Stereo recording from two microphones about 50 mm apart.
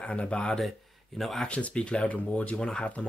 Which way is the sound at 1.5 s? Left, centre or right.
Left.